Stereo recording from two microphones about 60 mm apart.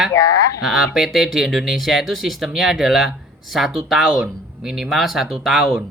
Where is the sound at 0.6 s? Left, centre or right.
Centre.